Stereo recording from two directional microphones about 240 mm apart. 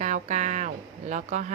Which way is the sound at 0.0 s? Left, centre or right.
Right.